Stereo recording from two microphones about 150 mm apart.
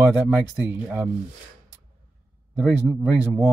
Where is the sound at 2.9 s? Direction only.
15° right (ahead or behind).